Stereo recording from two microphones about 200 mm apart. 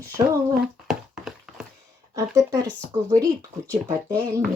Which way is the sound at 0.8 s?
Centre (ahead or behind).